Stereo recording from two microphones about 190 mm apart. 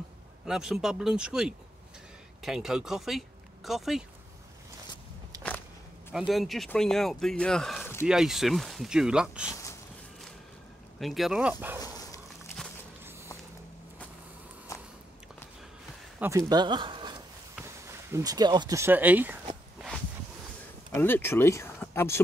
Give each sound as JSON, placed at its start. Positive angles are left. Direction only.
{"t": 0.5, "sound": "speech", "side_deg": 0}
{"t": 6.1, "sound": "speech", "side_deg": 0}
{"t": 11.0, "sound": "speech", "side_deg": 0}
{"t": 11.8, "sound": "dog", "side_deg": 15}
{"t": 14.7, "sound": "a sound", "side_deg": 15}
{"t": 16.2, "sound": "a man's voice", "side_deg": -15}
{"t": 20.9, "sound": "speech", "side_deg": 10}